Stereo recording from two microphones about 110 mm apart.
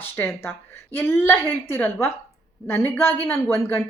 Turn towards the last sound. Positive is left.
turn(degrees=20)  # may be behind; listen again after turning